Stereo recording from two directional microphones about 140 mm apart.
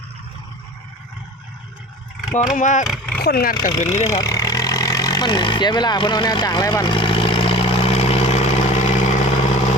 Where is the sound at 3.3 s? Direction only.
90° left.